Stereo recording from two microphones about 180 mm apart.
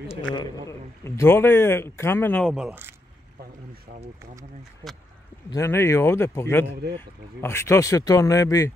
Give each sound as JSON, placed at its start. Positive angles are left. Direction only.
{"t": 0.1, "sound": "speech", "side_deg": 25}
{"t": 5.5, "sound": "speech", "side_deg": 15}